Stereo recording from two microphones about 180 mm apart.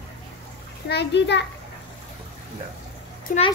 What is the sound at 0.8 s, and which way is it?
Speech, 70° left (ahead or behind).